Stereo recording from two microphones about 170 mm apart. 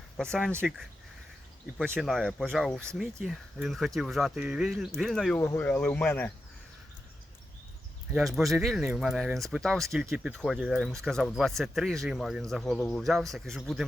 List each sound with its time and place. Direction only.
0.2 s speech: 5° left (ahead or behind)
2.0 s speech: centre (ahead or behind)
5.4 s speech: 15° left (ahead or behind)
8.3 s speech: centre (ahead or behind)